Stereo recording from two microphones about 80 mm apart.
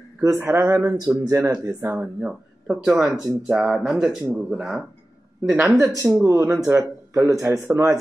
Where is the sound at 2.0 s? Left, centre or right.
Centre.